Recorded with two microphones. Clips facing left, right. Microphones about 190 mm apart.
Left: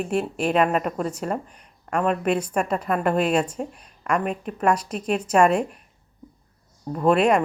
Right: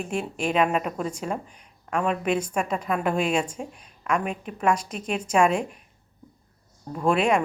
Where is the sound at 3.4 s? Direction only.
5° right (ahead or behind).